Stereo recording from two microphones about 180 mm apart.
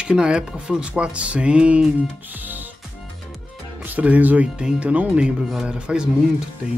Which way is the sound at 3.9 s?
10° right (ahead or behind).